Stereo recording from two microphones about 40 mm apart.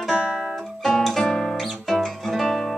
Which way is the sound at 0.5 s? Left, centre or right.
Centre.